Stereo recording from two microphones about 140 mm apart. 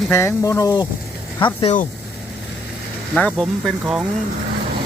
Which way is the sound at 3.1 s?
5° left (ahead or behind).